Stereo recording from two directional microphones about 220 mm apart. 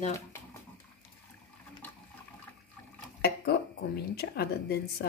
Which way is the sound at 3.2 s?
45° left (ahead or behind).